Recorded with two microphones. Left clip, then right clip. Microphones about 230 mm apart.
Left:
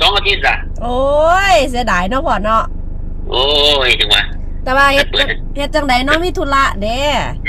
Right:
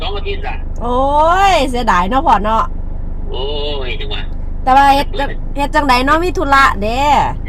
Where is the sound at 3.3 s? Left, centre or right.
Left.